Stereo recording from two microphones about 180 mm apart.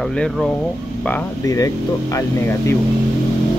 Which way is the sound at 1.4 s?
20° left (ahead or behind).